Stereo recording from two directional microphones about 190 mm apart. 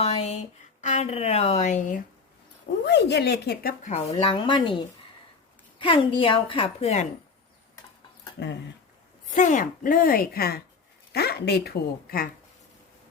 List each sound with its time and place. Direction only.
0.0 s a woman's voice: 35° left (ahead or behind)
2.8 s speech: 65° left (ahead or behind); by 4.8 s 25° left (ahead or behind)
5.8 s a woman's voice: 25° left (ahead or behind)
9.3 s speech: 40° left (ahead or behind)